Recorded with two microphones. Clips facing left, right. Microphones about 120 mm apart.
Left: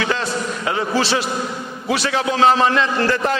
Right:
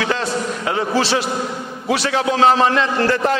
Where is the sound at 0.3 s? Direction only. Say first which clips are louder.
Right 1 dB; 40° right (ahead or behind).